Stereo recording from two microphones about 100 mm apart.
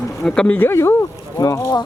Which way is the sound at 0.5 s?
25° left (ahead or behind).